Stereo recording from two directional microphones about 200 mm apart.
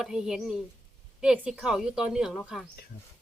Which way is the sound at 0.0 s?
Centre (ahead or behind).